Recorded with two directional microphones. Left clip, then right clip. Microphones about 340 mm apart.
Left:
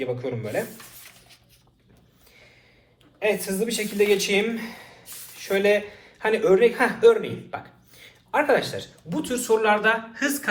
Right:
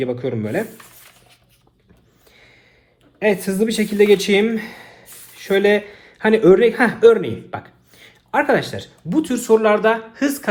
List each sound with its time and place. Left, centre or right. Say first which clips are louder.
0.0 s speech: right 6 dB; right
3.2 s a man's voice: right 6 dB; right